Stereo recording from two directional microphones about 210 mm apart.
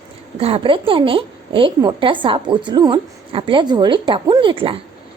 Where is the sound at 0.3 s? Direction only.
25° right (ahead or behind).